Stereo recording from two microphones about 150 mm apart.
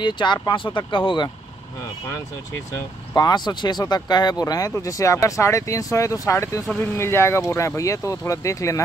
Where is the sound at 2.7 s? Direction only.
25° left (ahead or behind).